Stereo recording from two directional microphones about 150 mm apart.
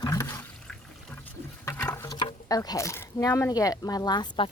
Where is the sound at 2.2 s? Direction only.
30° left (ahead or behind).